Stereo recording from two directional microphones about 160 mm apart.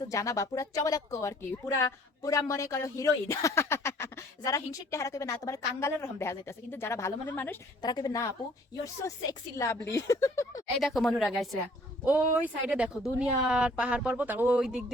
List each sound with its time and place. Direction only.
0.1 s speech: 20° left (ahead or behind)
7.8 s speech: 25° left (ahead or behind)
9.6 s speech: 15° left (ahead or behind)
10.8 s speech: centre (ahead or behind)
12.0 s speech: 10° right (ahead or behind)